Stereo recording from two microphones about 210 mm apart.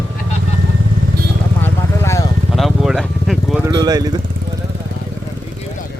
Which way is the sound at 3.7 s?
20° right (ahead or behind).